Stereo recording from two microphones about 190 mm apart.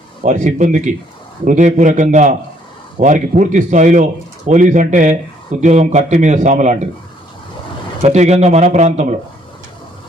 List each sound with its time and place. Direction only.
0.2 s speech: 40° right (ahead or behind)
8.0 s speech: 35° right (ahead or behind)